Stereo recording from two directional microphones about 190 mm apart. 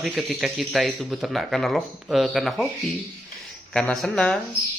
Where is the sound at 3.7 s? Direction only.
5° left (ahead or behind).